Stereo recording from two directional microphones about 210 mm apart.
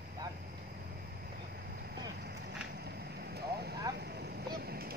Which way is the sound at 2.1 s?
50° right (ahead or behind).